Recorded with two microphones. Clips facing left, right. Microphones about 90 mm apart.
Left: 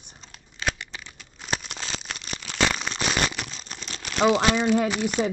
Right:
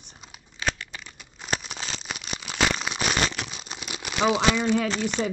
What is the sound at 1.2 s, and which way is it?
Crumpling, centre (ahead or behind).